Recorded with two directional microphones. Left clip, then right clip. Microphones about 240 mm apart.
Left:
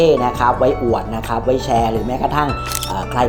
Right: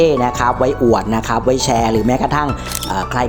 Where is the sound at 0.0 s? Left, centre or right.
Right.